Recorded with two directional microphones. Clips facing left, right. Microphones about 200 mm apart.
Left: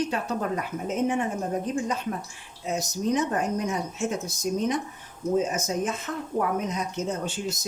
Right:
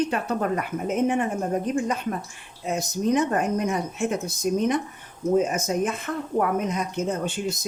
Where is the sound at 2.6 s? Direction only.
55° right (ahead or behind).